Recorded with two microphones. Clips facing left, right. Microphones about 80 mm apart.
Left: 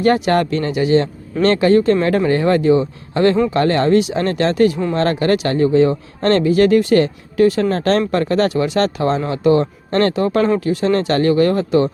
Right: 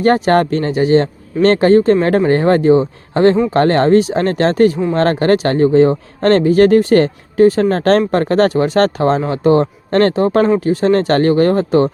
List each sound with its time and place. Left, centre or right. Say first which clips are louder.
0.0 s speech: right 3 dB; right